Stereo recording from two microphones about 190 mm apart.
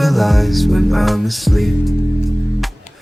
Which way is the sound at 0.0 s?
Centre (ahead or behind).